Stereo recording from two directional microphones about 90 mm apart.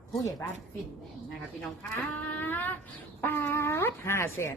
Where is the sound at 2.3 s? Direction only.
20° left (ahead or behind).